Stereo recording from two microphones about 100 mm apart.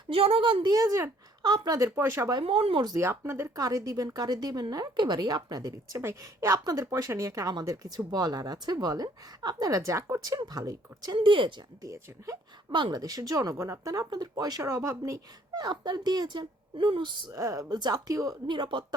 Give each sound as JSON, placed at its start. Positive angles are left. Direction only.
{"t": 0.1, "sound": "a woman's voice", "side_deg": -70}
{"t": 0.7, "sound": "a woman's voice", "side_deg": -35}
{"t": 1.4, "sound": "speech", "side_deg": -50}
{"t": 2.0, "sound": "speech", "side_deg": -25}
{"t": 2.4, "sound": "speech", "side_deg": -65}
{"t": 2.8, "sound": "a woman's voice", "side_deg": -35}
{"t": 6.0, "sound": "a woman's voice", "side_deg": -25}
{"t": 11.2, "sound": "speech", "side_deg": -55}
{"t": 11.8, "sound": "a woman's voice", "side_deg": -35}
{"t": 12.7, "sound": "a woman's voice", "side_deg": -45}
{"t": 14.6, "sound": "speech", "side_deg": -30}
{"t": 15.5, "sound": "speech", "side_deg": -45}
{"t": 17.3, "sound": "a woman's voice", "side_deg": -35}
{"t": 18.5, "sound": "speech", "side_deg": -50}